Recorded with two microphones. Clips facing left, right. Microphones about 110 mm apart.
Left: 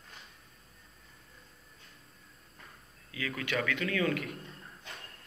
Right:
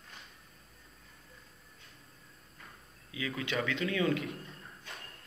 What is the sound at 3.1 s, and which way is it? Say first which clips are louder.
Speech: left 1 dB; 20° right (ahead or behind).